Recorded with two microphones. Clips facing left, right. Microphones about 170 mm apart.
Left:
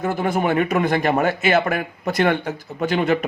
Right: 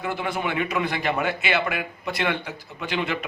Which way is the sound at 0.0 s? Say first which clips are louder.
Left 6 dB; 45° left (ahead or behind).